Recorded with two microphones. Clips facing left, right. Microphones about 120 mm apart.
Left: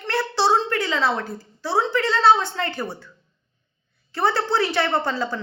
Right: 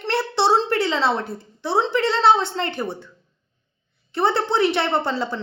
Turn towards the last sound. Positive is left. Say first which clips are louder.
# right 1 dB
turn(degrees=-25)  # may be behind; listen again after turning